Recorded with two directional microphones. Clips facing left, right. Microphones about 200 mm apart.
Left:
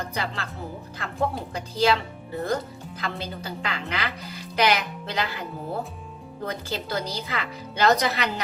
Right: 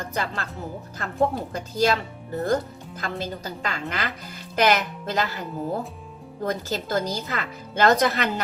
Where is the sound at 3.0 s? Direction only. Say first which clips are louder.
Right 2 dB; 45° right (ahead or behind).